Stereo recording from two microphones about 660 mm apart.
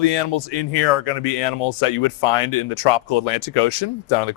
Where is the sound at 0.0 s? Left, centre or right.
Left.